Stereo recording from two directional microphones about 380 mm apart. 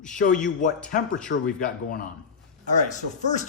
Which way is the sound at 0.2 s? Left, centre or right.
Centre.